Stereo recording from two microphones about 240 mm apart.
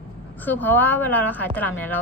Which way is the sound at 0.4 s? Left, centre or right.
Centre.